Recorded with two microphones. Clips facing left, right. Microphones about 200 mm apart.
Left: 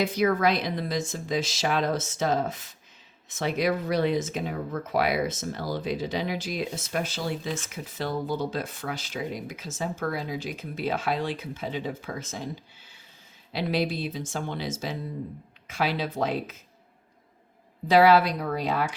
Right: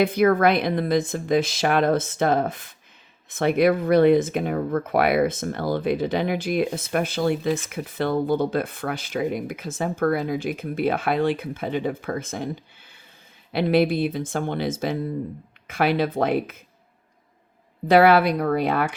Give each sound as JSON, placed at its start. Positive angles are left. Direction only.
{"t": 0.0, "sound": "speech", "side_deg": -55}
{"t": 13.5, "sound": "speech", "side_deg": -55}
{"t": 17.8, "sound": "speech", "side_deg": -55}